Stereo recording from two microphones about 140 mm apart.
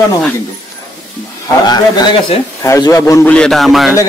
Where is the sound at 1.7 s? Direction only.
30° left (ahead or behind).